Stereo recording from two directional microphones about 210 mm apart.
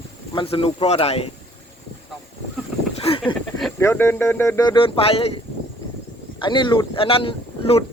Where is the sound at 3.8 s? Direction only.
10° left (ahead or behind); by 5.3 s 25° left (ahead or behind).